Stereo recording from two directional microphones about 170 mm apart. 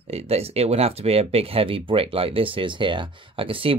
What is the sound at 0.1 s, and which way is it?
Speech, 35° right (ahead or behind).